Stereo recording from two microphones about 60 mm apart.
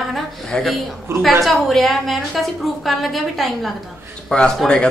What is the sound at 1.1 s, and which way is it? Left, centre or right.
Speech, right.